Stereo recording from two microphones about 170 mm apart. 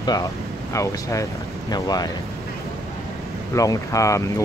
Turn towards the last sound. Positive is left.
turn(degrees=20)  # may be behind; listen again after turning